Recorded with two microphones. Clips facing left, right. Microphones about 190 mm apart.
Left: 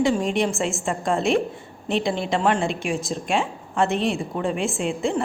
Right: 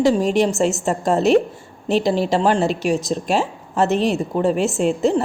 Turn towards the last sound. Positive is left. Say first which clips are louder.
# right 6 dB
turn(degrees=-40)  # may be behind; listen again after turning